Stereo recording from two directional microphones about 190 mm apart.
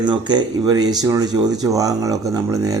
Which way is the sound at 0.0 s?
25° right (ahead or behind).